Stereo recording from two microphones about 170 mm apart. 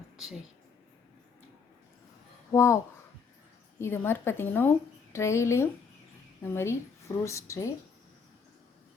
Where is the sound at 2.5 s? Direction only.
15° left (ahead or behind).